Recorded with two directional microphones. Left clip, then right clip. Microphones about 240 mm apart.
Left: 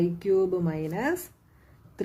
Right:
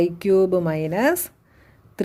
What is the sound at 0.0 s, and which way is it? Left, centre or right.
A woman's voice, right.